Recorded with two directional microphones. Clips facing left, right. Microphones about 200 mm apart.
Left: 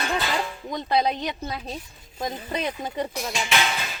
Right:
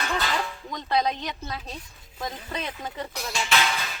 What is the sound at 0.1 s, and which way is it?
Music, 15° left (ahead or behind).